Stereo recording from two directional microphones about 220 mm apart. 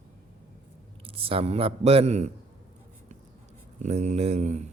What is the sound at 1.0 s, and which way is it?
A man's voice, 25° right (ahead or behind).